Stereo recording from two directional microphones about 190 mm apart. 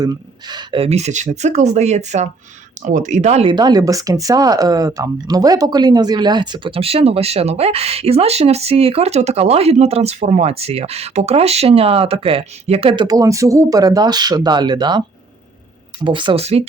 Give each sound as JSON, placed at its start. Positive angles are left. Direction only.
{"t": 0.0, "sound": "speech", "side_deg": -20}
{"t": 3.5, "sound": "speech", "side_deg": -20}
{"t": 16.0, "sound": "speech", "side_deg": -25}